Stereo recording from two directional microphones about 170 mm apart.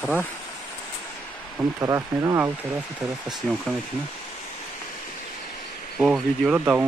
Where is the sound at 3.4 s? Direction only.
5° left (ahead or behind).